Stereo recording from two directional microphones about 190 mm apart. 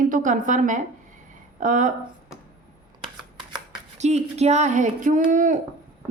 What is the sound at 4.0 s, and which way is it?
A woman's voice, 35° right (ahead or behind).